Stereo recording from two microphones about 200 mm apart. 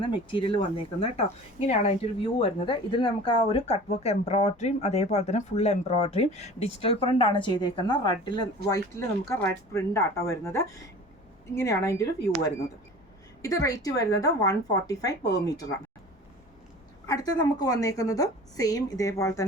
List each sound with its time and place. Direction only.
0.0 s a woman's voice: 25° left (ahead or behind)
13.4 s a woman's voice: 15° left (ahead or behind)
17.1 s a woman's voice: 20° left (ahead or behind)